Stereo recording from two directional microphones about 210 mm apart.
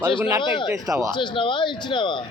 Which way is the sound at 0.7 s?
15° right (ahead or behind).